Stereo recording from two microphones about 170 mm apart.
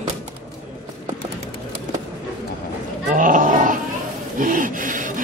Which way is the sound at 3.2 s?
50° right (ahead or behind).